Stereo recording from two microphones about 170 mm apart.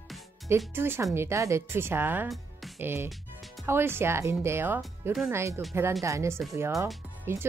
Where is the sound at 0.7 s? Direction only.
15° right (ahead or behind).